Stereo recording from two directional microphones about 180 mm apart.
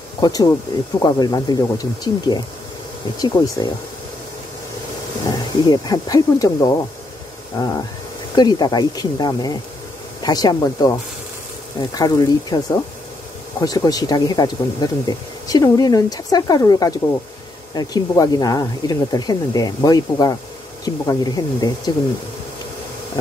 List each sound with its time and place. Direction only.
0.2 s speech: 20° left (ahead or behind)
5.3 s speech: 20° left (ahead or behind)
8.4 s speech: 25° left (ahead or behind)
11.9 s speech: 20° left (ahead or behind)
13.6 s speech: 20° left (ahead or behind)